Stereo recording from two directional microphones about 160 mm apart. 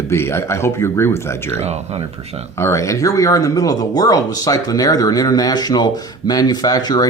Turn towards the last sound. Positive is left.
turn(degrees=25)  # may be behind; listen again after turning